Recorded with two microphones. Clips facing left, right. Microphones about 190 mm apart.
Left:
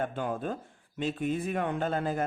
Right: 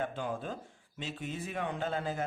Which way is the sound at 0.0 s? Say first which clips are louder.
Left 4 dB; 55° left (ahead or behind).